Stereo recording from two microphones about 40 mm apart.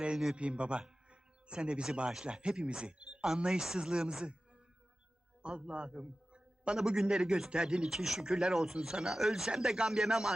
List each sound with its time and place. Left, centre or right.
0.3 s a man's voice: right
5.4 s a man's voice: right
6.7 s speech: centre